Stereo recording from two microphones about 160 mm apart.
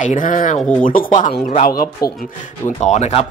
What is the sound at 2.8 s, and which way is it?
Speech, 45° left (ahead or behind).